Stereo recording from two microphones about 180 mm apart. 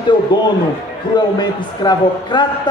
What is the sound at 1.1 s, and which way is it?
A man's voice, 25° left (ahead or behind).